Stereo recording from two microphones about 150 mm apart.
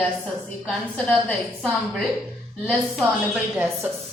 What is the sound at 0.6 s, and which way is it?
A woman's voice, 5° left (ahead or behind).